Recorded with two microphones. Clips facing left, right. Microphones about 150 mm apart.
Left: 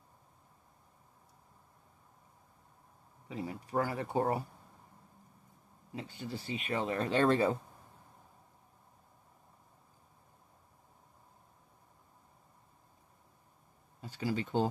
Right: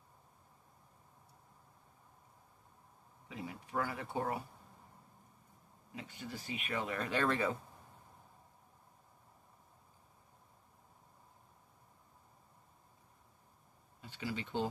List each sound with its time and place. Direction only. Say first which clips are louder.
3.3 s speech: left 6 dB; 35° left (ahead or behind)
5.9 s speech: left 5 dB; 30° left (ahead or behind)
14.0 s speech: left 6 dB; 40° left (ahead or behind)